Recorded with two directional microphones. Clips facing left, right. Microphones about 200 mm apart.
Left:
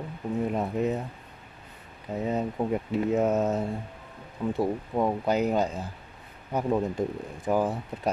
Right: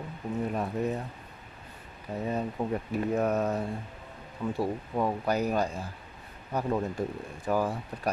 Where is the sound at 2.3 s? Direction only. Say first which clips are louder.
Left 3 dB; 20° left (ahead or behind).